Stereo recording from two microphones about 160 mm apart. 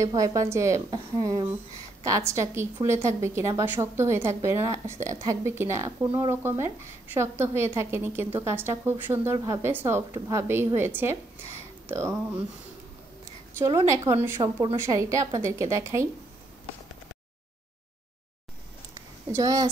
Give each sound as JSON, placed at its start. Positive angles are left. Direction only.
{"t": 0.0, "sound": "a woman's voice", "side_deg": -20}
{"t": 13.6, "sound": "a woman's voice", "side_deg": -20}
{"t": 19.3, "sound": "a woman's voice", "side_deg": -20}